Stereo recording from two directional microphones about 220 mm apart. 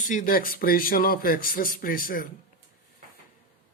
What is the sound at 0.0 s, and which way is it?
Speech, 35° left (ahead or behind).